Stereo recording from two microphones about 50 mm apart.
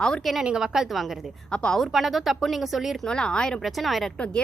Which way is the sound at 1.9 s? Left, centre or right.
Centre.